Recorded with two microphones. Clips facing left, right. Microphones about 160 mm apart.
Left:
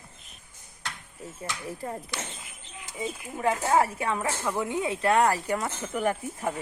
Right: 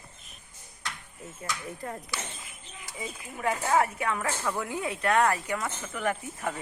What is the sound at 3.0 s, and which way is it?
Speech, 25° left (ahead or behind).